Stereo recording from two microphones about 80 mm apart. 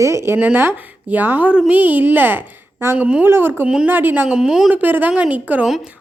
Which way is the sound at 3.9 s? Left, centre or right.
Right.